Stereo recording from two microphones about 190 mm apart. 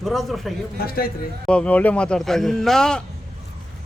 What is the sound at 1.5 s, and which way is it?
A man's voice, 5° left (ahead or behind).